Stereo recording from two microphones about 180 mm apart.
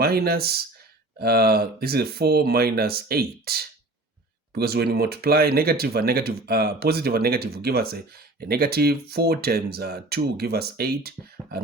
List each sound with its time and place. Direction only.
0.0 s speech: 60° right (ahead or behind)